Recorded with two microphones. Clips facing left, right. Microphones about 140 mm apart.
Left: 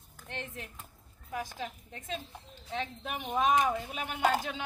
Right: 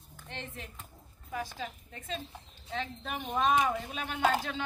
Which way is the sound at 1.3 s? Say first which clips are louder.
Even; 15° left (ahead or behind).